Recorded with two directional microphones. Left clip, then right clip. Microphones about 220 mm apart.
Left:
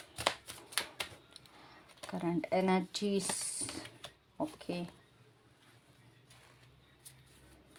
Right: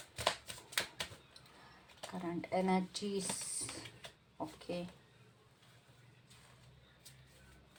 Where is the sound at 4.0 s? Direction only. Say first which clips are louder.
Left 6 dB; 50° left (ahead or behind).